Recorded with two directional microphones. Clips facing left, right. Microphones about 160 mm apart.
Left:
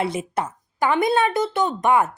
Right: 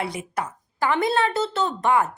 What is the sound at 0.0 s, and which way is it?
A woman's voice, 25° left (ahead or behind).